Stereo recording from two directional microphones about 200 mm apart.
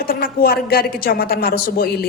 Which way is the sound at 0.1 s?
50° left (ahead or behind).